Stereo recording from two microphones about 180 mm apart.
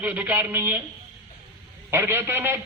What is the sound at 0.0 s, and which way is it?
Speech, 10° right (ahead or behind).